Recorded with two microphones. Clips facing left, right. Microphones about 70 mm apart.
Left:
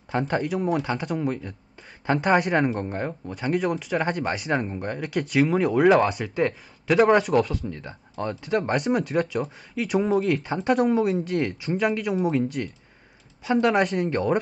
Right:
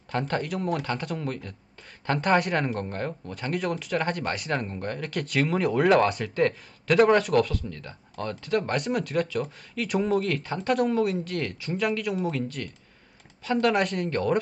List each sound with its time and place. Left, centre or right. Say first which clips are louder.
0.3 s speech: left 4 dB; centre
7.7 s speech: left 3 dB; centre
8.7 s speech: left 3 dB; centre